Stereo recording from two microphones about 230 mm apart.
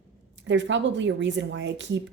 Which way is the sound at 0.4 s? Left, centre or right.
Right.